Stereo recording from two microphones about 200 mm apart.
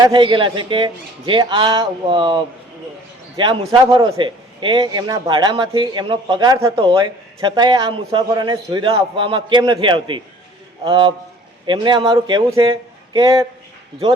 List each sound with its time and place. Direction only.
0.0 s a man's voice: 25° right (ahead or behind)